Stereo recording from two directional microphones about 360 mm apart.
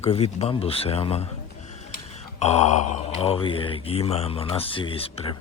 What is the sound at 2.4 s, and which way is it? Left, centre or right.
Speech, centre.